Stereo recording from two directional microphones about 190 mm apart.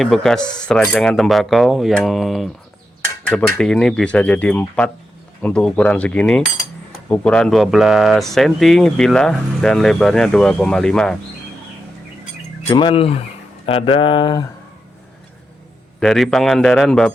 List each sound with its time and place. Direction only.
0.0 s speech: centre (ahead or behind)
5.4 s cutlery: 5° left (ahead or behind)
7.1 s speech: 5° left (ahead or behind)
12.6 s speech: 25° left (ahead or behind)
16.0 s speech: centre (ahead or behind)